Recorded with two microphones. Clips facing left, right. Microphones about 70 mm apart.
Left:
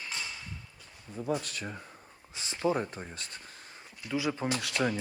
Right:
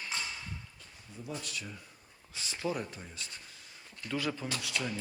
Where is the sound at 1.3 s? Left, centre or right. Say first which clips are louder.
Left 8 dB; left.